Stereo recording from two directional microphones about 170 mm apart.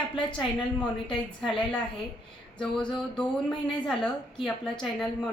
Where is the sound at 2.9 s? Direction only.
5° left (ahead or behind).